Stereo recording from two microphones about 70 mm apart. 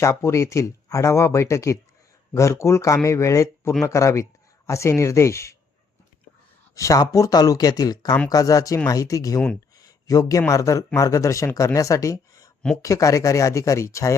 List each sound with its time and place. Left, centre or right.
0.0 s speech: left
6.7 s speech: left
9.7 s a sound: left
10.5 s speech: left